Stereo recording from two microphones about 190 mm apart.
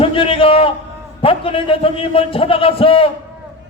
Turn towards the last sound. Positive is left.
turn(degrees=30)  # may be behind; listen again after turning